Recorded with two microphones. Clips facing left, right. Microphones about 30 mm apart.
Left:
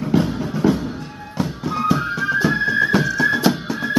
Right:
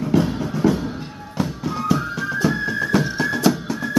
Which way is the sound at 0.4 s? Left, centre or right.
Centre.